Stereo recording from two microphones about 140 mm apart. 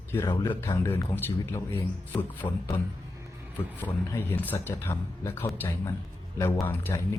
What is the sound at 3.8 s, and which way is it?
A man's voice, 15° left (ahead or behind).